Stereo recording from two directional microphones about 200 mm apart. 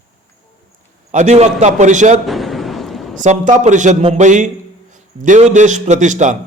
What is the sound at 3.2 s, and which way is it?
A man's voice, 40° right (ahead or behind).